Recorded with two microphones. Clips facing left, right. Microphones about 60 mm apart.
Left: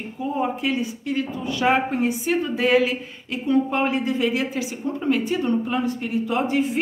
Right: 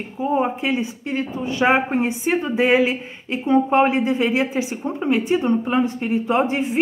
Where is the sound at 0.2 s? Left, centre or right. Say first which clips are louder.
Right 4 dB; right.